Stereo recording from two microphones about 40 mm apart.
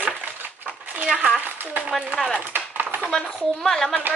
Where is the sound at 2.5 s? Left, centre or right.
Right.